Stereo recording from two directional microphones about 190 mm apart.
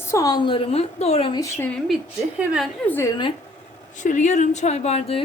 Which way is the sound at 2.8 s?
10° left (ahead or behind).